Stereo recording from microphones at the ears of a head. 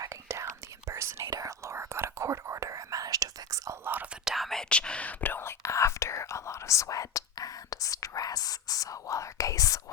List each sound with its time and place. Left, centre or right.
0.0 s whispering: right
4.4 s whispering: centre
5.2 s whispering: left